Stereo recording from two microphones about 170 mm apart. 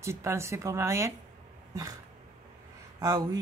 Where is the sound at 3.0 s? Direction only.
20° right (ahead or behind).